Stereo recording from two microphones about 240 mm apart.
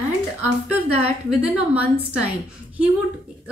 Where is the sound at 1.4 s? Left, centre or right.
Centre.